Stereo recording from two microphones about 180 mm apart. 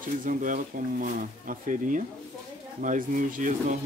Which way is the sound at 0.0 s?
50° right (ahead or behind).